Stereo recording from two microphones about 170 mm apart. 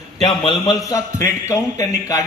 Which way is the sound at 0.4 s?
25° left (ahead or behind).